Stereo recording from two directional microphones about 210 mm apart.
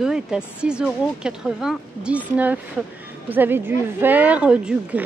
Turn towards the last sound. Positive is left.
turn(degrees=-5)  # may be behind; listen again after turning